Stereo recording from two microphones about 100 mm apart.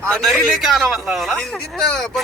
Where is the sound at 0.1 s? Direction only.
Centre (ahead or behind).